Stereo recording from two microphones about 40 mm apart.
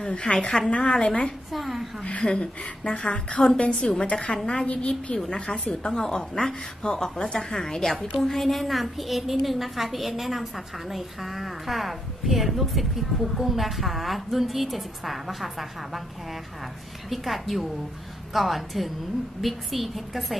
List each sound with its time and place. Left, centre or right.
0.2 s a woman's voice: centre
1.5 s a woman's voice: centre
2.2 s speech: left
2.8 s a woman's voice: left
5.1 s a woman's voice: centre
17.1 s a woman's voice: centre